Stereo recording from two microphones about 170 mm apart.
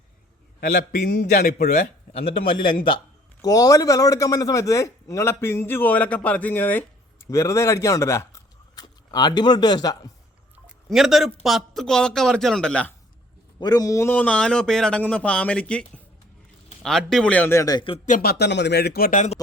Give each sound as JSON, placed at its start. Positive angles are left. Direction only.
{"t": 0.6, "sound": "a man's voice", "side_deg": 65}
{"t": 2.1, "sound": "a man's voice", "side_deg": 30}
{"t": 10.8, "sound": "a man's voice", "side_deg": 0}
{"t": 13.6, "sound": "a man's voice", "side_deg": 25}
{"t": 18.0, "sound": "speech", "side_deg": 55}